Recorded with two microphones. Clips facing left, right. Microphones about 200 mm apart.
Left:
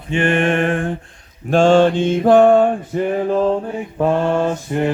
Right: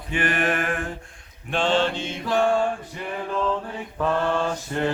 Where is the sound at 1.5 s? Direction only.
45° left (ahead or behind).